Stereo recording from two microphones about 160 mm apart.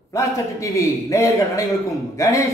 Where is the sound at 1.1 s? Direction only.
20° left (ahead or behind).